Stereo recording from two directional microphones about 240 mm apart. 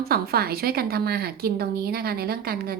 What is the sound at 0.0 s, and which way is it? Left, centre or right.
Speech, right.